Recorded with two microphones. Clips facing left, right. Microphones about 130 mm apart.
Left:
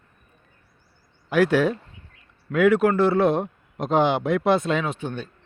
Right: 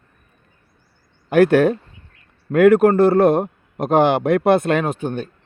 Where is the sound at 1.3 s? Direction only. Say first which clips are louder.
Right 6 dB; 55° right (ahead or behind).